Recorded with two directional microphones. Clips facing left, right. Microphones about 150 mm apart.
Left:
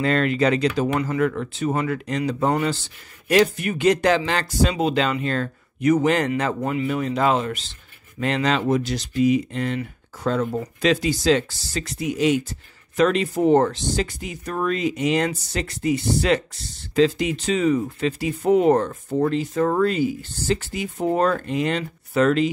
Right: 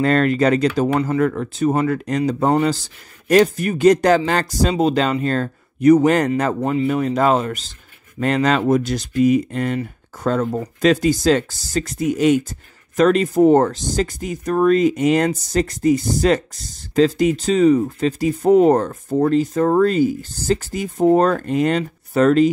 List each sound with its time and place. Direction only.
0.0 s speech: 45° right (ahead or behind)